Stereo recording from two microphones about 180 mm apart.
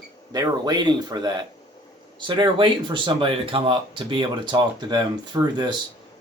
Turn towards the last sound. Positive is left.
turn(degrees=-25)  # may be behind; listen again after turning